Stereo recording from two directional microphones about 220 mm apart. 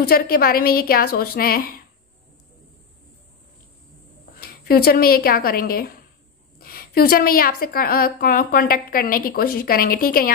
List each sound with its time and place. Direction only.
0.0 s a woman's voice: 45° left (ahead or behind)
4.3 s a woman's voice: 45° left (ahead or behind)